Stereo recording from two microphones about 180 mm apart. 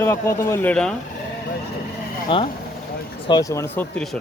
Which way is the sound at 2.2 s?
30° left (ahead or behind).